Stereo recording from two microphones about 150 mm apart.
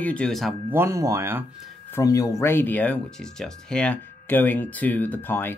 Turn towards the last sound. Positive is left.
turn(degrees=15)  # may be behind; listen again after turning